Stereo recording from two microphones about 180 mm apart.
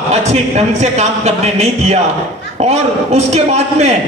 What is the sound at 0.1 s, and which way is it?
A man's voice, 40° right (ahead or behind).